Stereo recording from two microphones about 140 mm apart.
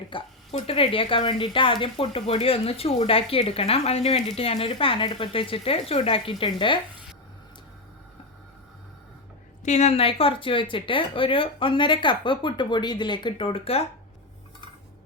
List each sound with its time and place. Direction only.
0.1 s a woman's voice: 40° left (ahead or behind)
9.6 s speech: 55° left (ahead or behind)